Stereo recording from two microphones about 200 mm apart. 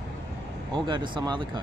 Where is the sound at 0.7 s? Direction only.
25° right (ahead or behind).